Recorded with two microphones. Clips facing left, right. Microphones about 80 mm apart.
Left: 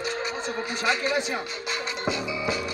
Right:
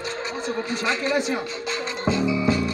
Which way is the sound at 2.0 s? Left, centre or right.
Centre.